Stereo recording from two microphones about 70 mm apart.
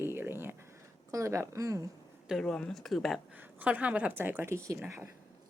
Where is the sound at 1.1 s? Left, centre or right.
Right.